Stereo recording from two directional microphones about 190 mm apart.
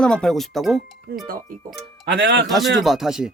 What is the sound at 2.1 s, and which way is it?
Speech, 65° right (ahead or behind).